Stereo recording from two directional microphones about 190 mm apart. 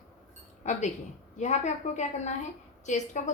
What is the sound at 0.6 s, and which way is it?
A woman's voice, 35° left (ahead or behind).